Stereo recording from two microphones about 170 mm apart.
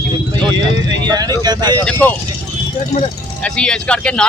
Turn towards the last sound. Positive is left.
turn(degrees=5)  # may be behind; listen again after turning